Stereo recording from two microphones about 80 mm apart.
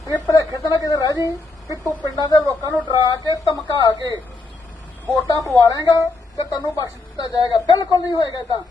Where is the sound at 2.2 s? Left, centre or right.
Left.